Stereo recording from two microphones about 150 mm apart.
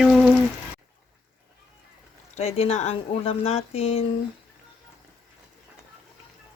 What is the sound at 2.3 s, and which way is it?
Speech, 45° left (ahead or behind).